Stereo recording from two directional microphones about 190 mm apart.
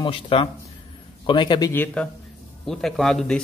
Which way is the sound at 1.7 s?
10° left (ahead or behind).